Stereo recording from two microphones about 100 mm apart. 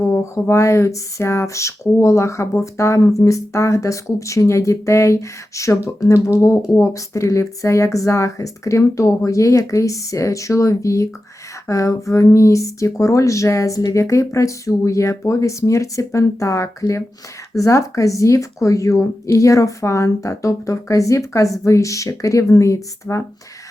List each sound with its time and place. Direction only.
0.0 s speech: 25° left (ahead or behind)